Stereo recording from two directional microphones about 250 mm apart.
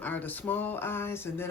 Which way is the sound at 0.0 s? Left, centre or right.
Centre.